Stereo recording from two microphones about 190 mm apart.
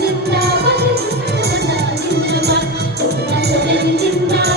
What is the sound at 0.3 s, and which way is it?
Music, 55° right (ahead or behind).